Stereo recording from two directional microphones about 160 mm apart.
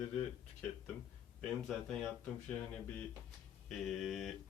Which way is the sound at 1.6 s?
5° left (ahead or behind).